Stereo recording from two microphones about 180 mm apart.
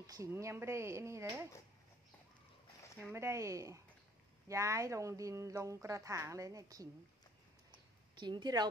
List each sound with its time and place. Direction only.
0.0 s a woman's voice: 20° right (ahead or behind)
3.0 s a woman's voice: 15° right (ahead or behind)
8.1 s a woman's voice: 25° right (ahead or behind)